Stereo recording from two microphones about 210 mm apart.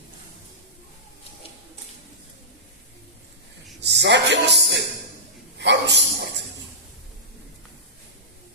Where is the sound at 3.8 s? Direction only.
55° right (ahead or behind).